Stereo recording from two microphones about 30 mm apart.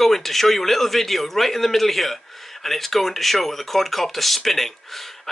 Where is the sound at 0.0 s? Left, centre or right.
Centre.